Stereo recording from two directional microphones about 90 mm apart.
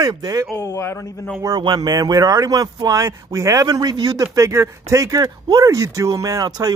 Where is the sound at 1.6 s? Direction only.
50° right (ahead or behind).